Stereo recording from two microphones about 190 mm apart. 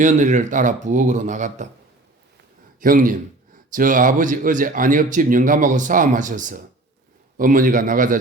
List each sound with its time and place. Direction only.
0.0 s speech: 40° right (ahead or behind)
2.8 s speech: 45° right (ahead or behind)